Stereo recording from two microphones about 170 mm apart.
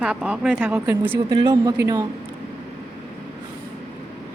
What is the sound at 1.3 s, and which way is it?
Speech, 25° right (ahead or behind).